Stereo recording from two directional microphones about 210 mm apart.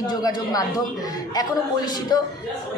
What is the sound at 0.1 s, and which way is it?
Speech, 20° left (ahead or behind).